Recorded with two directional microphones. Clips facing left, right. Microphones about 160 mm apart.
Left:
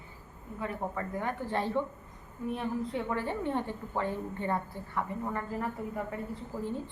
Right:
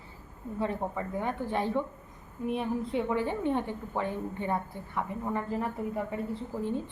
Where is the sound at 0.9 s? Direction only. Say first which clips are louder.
Right 2 dB; 15° right (ahead or behind).